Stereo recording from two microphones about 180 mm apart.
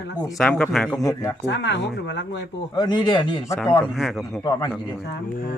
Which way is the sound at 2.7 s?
25° left (ahead or behind).